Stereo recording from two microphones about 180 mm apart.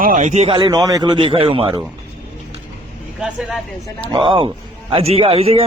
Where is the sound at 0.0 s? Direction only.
45° right (ahead or behind); by 1.8 s 30° right (ahead or behind).